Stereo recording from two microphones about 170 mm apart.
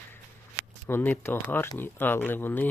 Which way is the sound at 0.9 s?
10° left (ahead or behind).